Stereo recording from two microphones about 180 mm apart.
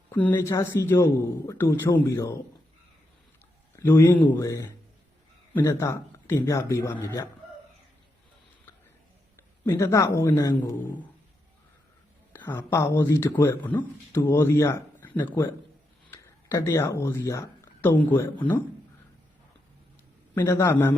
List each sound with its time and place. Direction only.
0.1 s a man's voice: 10° left (ahead or behind)
3.8 s speech: 15° left (ahead or behind)
9.6 s speech: 15° left (ahead or behind)
12.3 s speech: 10° left (ahead or behind)
20.3 s speech: 15° left (ahead or behind)